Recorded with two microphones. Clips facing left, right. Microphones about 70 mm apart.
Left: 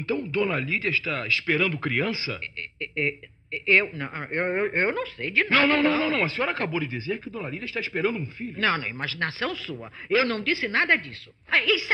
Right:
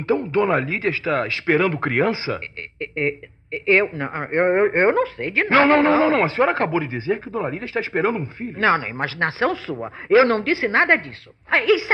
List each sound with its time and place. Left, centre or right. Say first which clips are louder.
0.0 s speech: right 6 dB; right